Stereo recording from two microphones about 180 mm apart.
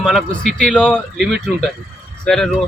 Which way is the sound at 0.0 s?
Centre (ahead or behind).